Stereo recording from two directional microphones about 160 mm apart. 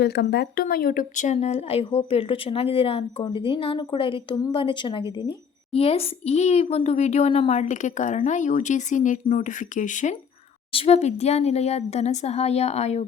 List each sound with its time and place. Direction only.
0.0 s speech: 90° left; by 4.4 s 35° left (ahead or behind)
4.4 s a woman's voice: 20° left (ahead or behind); by 10.2 s 50° left (ahead or behind)
10.7 s a woman's voice: 40° left (ahead or behind)